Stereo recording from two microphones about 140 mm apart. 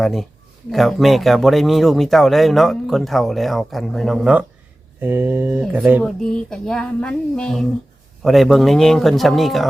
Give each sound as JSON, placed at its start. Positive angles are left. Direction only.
{"t": 0.0, "sound": "speech", "side_deg": 0}
{"t": 6.1, "sound": "speech", "side_deg": 5}